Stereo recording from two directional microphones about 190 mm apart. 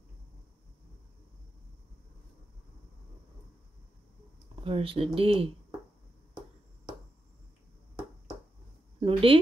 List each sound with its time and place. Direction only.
4.6 s speech: 30° right (ahead or behind)
9.0 s a woman's voice: 30° right (ahead or behind)